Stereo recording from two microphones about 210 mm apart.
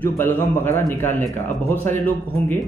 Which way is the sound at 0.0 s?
10° left (ahead or behind).